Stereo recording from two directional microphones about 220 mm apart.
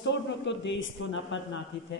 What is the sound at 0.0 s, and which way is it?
Speech, 55° left (ahead or behind).